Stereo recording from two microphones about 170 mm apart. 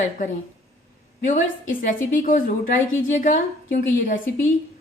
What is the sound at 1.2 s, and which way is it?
A woman's voice, 45° left (ahead or behind).